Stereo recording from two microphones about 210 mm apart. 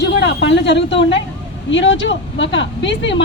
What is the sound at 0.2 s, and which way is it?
Speech, 55° left (ahead or behind).